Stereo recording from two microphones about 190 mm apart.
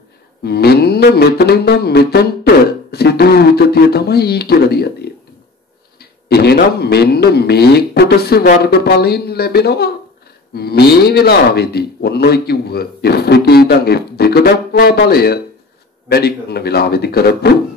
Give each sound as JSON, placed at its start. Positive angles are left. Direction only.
{"t": 0.4, "sound": "a man's voice", "side_deg": 55}